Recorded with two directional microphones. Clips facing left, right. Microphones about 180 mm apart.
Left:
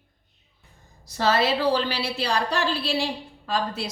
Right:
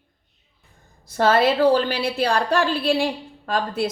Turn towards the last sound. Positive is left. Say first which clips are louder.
# right 4 dB
turn(degrees=-55)  # may be behind; listen again after turning